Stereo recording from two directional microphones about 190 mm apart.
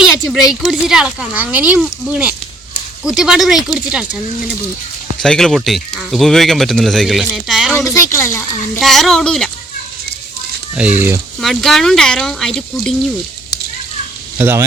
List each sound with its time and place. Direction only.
0.0 s speech: centre (ahead or behind)
5.2 s speech: 5° left (ahead or behind)
7.9 s a child's voice: 15° left (ahead or behind)
8.8 s speech: centre (ahead or behind)
10.8 s speech: 5° right (ahead or behind)
14.3 s speech: 10° right (ahead or behind)